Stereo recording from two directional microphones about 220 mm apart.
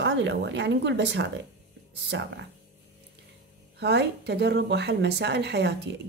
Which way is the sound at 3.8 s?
50° right (ahead or behind).